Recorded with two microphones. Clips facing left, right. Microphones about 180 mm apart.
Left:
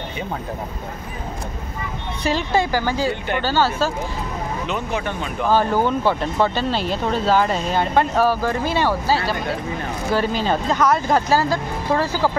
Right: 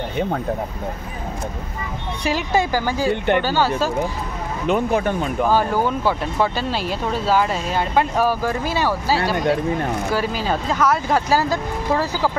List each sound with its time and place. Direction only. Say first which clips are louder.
2.2 s speech: even; 15° right (ahead or behind)
3.1 s speech: right 5 dB; 60° right (ahead or behind)
3.4 s speech: even; 15° right (ahead or behind)
4.6 s speech: right 9 dB; 50° right (ahead or behind)
5.4 s speech: left 1 dB; 10° right (ahead or behind)